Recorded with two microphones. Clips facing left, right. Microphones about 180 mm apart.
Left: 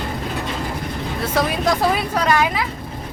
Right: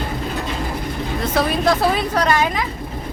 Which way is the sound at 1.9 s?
5° left (ahead or behind).